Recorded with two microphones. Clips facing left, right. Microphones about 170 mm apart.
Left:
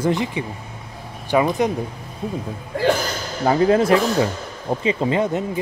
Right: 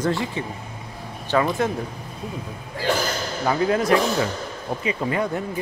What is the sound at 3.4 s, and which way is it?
Speech, 30° left (ahead or behind).